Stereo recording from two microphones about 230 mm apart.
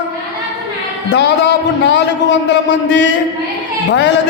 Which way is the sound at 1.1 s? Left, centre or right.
Left.